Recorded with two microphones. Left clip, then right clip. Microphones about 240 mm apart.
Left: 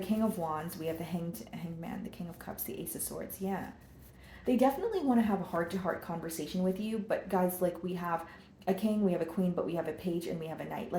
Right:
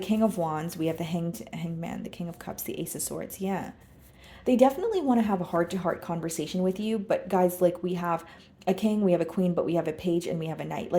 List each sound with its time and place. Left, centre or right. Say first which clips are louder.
0.0 s a woman's voice: right 7 dB; right
2.6 s a woman's voice: right 9 dB; right